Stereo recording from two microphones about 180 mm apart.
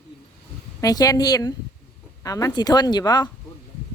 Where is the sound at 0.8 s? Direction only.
20° left (ahead or behind).